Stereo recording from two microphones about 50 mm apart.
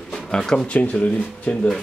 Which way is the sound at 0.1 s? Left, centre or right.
Centre.